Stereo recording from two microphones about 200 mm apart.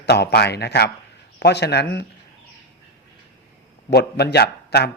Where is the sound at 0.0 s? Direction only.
55° left (ahead or behind).